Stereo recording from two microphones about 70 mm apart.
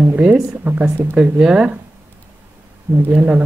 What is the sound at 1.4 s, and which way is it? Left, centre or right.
Speech, centre.